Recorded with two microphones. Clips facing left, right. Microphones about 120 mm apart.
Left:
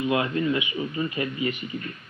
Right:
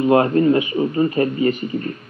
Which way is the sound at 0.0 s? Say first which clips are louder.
Right 10 dB; 40° right (ahead or behind).